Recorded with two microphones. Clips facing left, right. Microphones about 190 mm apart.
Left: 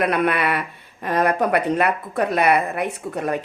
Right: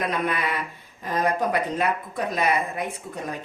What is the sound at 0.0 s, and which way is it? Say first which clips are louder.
Speech: left 6 dB; 65° left (ahead or behind).